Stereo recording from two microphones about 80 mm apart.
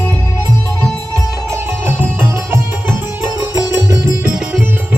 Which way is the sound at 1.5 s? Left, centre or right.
Right.